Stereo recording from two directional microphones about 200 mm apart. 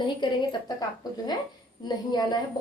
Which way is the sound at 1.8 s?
20° left (ahead or behind).